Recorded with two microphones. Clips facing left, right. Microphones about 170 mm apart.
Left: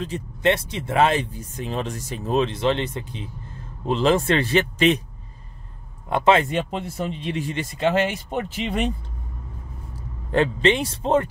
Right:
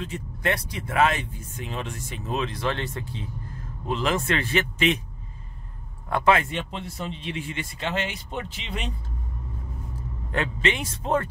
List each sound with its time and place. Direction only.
0.0 s speech: 30° left (ahead or behind)
6.0 s speech: 20° left (ahead or behind)
6.5 s speech: 45° left (ahead or behind)
9.9 s speech: 35° left (ahead or behind)